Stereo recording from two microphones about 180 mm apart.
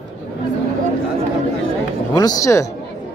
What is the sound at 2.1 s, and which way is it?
Speech, 20° left (ahead or behind).